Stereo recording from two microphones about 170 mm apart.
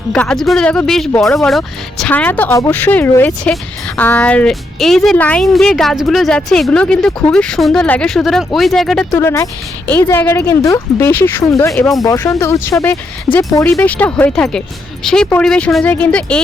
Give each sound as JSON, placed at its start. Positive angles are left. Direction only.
{"t": 0.1, "sound": "speech", "side_deg": 5}
{"t": 9.1, "sound": "speech", "side_deg": 15}
{"t": 11.7, "sound": "speech", "side_deg": 0}
{"t": 12.0, "sound": "speech", "side_deg": 20}